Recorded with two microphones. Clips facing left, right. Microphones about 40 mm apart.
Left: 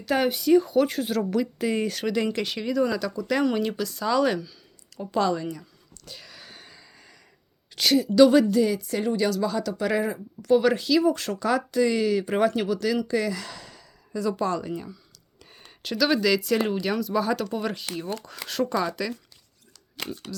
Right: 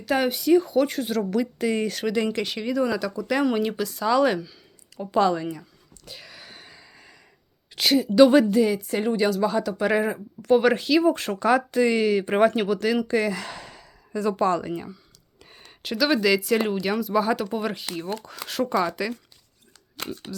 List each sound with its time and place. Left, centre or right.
0.0 s speech: centre
6.1 s a sound: centre
7.8 s speech: centre
8.0 s a woman's voice: right
15.5 s speech: centre